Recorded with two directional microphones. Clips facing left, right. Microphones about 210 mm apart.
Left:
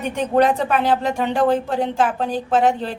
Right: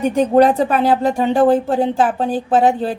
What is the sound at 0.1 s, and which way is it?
A woman's voice, 35° right (ahead or behind).